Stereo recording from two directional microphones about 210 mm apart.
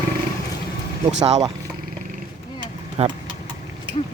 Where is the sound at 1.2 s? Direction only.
20° right (ahead or behind).